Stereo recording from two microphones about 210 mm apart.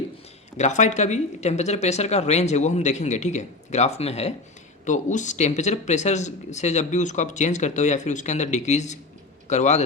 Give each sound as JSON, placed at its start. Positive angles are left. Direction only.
{"t": 0.5, "sound": "speech", "side_deg": 35}